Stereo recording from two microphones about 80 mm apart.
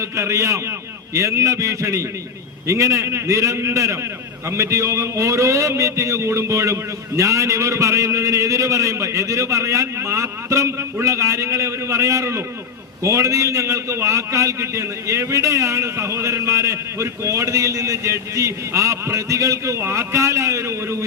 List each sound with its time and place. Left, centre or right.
0.0 s a man's voice: right